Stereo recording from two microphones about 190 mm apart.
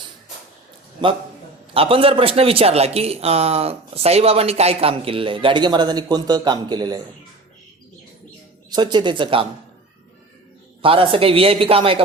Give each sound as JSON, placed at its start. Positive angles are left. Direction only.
{"t": 1.0, "sound": "a man's voice", "side_deg": -25}
{"t": 8.7, "sound": "a man's voice", "side_deg": -25}
{"t": 10.8, "sound": "a man's voice", "side_deg": -30}